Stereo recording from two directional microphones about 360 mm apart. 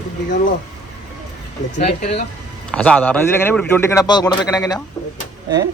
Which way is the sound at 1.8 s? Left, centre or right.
Centre.